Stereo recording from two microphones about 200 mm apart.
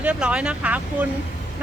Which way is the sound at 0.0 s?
5° right (ahead or behind).